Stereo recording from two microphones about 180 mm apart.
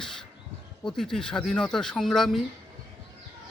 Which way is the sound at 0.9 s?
5° left (ahead or behind).